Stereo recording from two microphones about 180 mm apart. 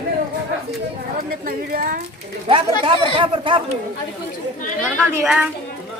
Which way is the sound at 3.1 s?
30° right (ahead or behind).